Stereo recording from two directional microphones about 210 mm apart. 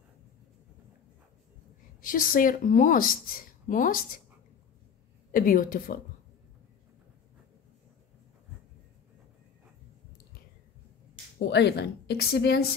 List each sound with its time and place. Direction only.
2.0 s a woman's voice: 40° left (ahead or behind)
5.3 s a woman's voice: 40° left (ahead or behind)
11.4 s a woman's voice: 55° left (ahead or behind)